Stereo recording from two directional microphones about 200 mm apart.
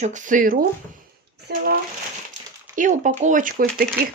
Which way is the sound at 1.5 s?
55° right (ahead or behind).